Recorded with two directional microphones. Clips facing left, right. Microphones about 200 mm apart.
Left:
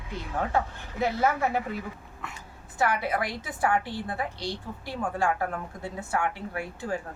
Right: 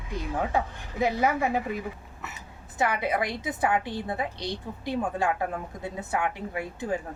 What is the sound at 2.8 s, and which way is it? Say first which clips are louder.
A woman's voice: right 1 dB; 20° right (ahead or behind).